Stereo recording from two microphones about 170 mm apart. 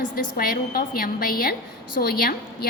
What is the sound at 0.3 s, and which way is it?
A woman's voice, 55° left (ahead or behind).